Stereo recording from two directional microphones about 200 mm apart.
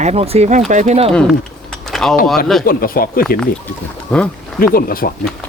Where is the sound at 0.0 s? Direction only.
30° right (ahead or behind).